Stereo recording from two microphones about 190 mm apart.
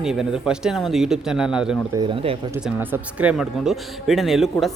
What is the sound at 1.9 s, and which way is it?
Speech, 25° right (ahead or behind).